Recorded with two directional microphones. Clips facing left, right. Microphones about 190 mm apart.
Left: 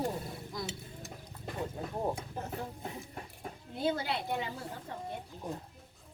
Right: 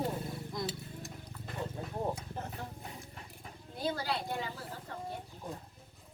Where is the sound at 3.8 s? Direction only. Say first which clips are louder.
Left 2 dB; 25° left (ahead or behind).